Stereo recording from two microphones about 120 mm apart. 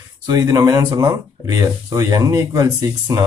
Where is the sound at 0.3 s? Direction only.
30° right (ahead or behind).